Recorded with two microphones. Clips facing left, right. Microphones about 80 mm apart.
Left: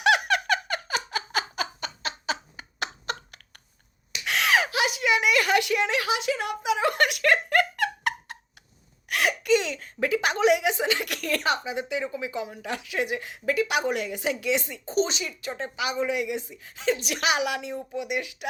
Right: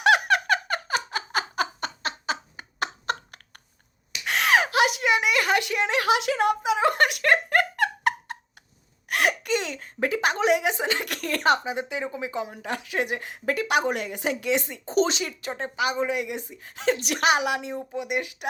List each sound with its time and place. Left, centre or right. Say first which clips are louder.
0.0 s a sound: right 2 dB; right
1.8 s laughter: right 3 dB; right
2.3 s a sound: right 1 dB; right
6.1 s speech: right 4 dB; right
6.3 s giggle: right 4 dB; right
9.0 s a sound: left 1 dB; right
11.4 s speech: right 7 dB; right
11.7 s speech: even; right
14.9 s speech: right 3 dB; right
15.2 s speech: right 2 dB; right
17.2 s speech: right 3 dB; right